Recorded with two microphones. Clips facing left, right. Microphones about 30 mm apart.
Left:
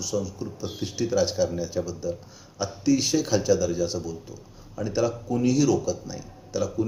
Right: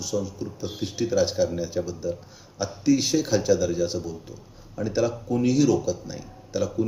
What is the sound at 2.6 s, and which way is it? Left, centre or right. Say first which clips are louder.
Speech: right 1 dB; centre.